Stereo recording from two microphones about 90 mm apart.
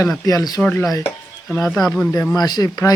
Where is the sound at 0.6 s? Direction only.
20° left (ahead or behind).